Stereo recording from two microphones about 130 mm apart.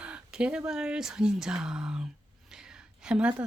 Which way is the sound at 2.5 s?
5° right (ahead or behind).